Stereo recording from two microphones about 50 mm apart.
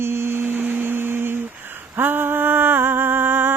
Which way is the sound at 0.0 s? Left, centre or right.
Right.